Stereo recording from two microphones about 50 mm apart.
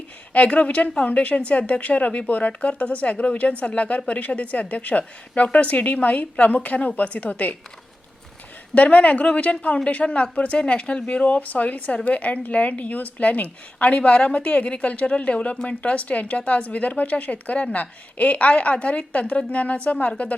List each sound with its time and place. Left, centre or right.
0.3 s speech: left
8.7 s speech: left